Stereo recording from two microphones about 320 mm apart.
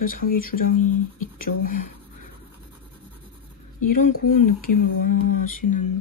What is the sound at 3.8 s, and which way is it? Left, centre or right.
Speech, left.